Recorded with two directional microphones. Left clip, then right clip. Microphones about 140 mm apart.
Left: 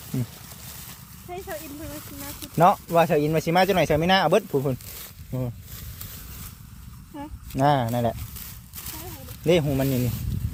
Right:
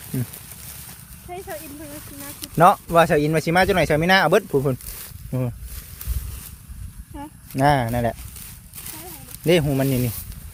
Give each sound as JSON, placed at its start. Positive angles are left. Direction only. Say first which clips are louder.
{"t": 1.3, "sound": "speech", "louder": "right 1 dB", "side_deg": 0}
{"t": 2.6, "sound": "speech", "louder": "right 4 dB", "side_deg": -25}
{"t": 7.1, "sound": "a sound", "louder": "right 1 dB", "side_deg": 5}
{"t": 7.5, "sound": "speech", "louder": "right 3 dB", "side_deg": -30}
{"t": 9.4, "sound": "speech", "louder": "right 3 dB", "side_deg": -30}